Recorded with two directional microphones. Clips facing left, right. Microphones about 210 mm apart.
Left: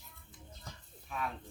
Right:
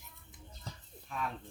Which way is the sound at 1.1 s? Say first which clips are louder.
Even; 5° left (ahead or behind).